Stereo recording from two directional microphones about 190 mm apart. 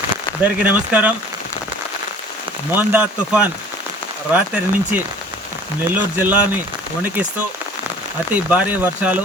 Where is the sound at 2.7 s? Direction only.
10° right (ahead or behind).